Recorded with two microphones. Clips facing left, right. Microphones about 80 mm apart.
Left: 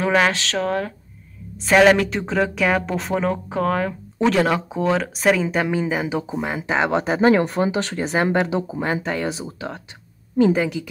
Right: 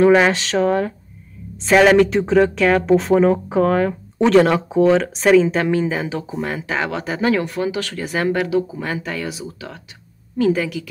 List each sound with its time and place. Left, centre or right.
0.0 s speech: centre; by 10.9 s left